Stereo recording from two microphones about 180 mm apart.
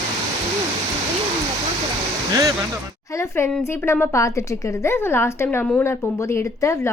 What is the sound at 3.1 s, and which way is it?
A woman's voice, 15° left (ahead or behind).